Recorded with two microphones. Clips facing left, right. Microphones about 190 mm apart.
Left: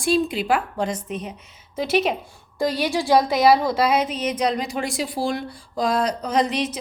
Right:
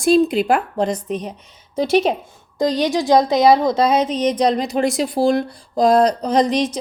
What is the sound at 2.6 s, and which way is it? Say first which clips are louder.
A woman's voice: right 4 dB; 20° right (ahead or behind).